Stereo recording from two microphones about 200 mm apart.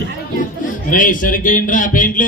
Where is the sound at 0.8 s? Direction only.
40° left (ahead or behind).